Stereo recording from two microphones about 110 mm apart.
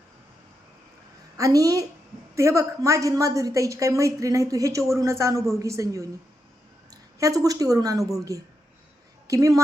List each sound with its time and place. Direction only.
1.4 s a woman's voice: 30° right (ahead or behind)
7.2 s a woman's voice: 30° right (ahead or behind)